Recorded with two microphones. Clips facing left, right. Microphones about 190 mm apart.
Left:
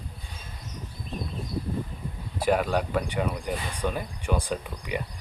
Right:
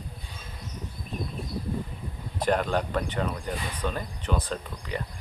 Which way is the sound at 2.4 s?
10° left (ahead or behind).